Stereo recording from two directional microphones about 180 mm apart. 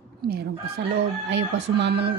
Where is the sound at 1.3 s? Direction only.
75° right (ahead or behind).